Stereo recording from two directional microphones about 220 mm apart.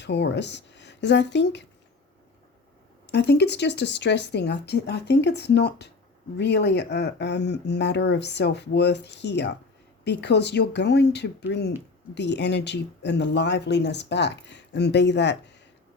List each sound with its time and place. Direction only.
0.0 s speech: 50° left (ahead or behind)
3.1 s speech: 50° left (ahead or behind)